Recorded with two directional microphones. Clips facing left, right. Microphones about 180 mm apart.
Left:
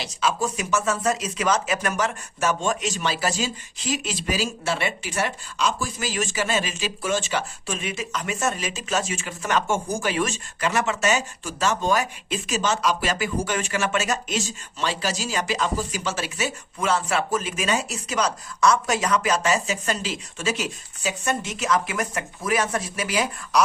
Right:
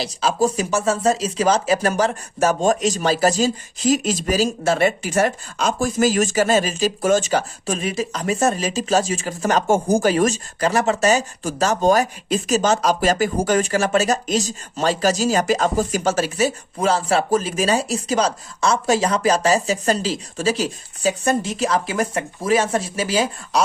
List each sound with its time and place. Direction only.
0.0 s speech: 35° right (ahead or behind)